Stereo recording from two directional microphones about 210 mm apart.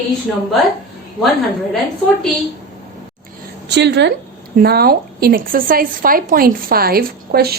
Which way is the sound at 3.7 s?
55° right (ahead or behind).